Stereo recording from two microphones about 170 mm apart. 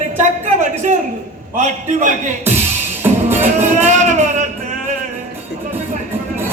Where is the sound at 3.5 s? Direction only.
45° right (ahead or behind).